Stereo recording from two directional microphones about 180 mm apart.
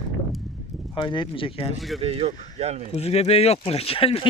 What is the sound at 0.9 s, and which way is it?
Speech, 25° left (ahead or behind).